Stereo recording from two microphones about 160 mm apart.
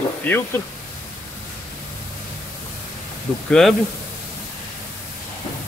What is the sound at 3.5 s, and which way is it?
Speech, centre (ahead or behind).